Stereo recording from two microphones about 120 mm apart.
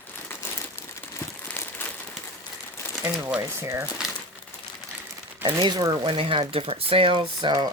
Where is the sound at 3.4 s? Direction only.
25° right (ahead or behind).